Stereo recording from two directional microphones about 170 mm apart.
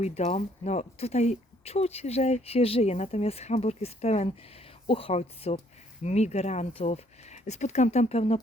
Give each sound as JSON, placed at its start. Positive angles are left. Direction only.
{"t": 0.0, "sound": "speech", "side_deg": 40}